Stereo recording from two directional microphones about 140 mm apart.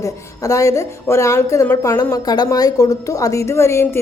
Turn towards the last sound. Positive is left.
turn(degrees=20)  # may be behind; listen again after turning